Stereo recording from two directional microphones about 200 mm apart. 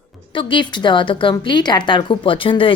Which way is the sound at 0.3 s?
25° left (ahead or behind).